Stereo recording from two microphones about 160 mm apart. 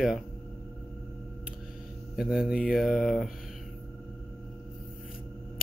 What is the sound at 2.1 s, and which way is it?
Speech, 5° right (ahead or behind).